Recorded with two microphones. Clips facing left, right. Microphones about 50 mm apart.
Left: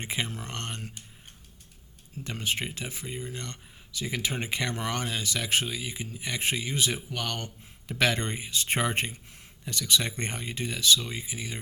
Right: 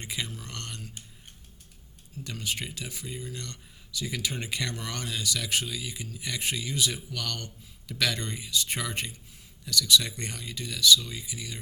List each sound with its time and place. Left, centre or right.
0.0 s speech: left
2.2 s speech: left